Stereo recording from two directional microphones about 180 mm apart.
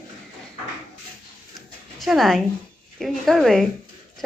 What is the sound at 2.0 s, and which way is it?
A woman's voice, centre (ahead or behind).